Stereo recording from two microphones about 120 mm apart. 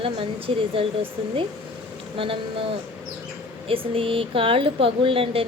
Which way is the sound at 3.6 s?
50° right (ahead or behind).